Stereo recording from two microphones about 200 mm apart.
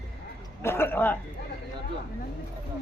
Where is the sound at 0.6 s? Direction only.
10° left (ahead or behind).